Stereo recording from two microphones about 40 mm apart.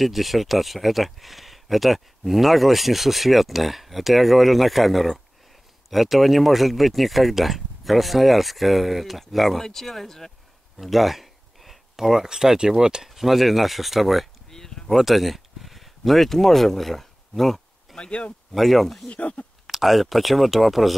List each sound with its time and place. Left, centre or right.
0.0 s speech: centre
10.8 s speech: centre
13.1 s speech: centre
14.5 s a sound: centre
14.9 s speech: centre
17.9 s speech: left
18.5 s speech: centre
19.0 s speech: left
19.6 s speech: centre